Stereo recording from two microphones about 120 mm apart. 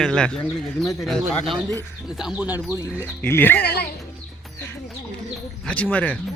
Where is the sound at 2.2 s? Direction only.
5° right (ahead or behind).